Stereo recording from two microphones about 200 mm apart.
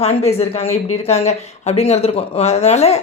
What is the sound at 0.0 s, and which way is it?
Speech, 30° left (ahead or behind).